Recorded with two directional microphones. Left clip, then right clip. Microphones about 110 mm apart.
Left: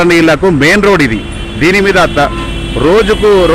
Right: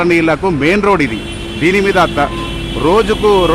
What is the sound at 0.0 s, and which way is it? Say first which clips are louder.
Speech: left 5 dB; 30° left (ahead or behind).